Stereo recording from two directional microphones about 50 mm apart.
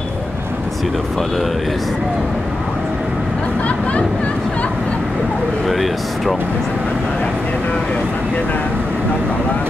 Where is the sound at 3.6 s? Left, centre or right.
Left.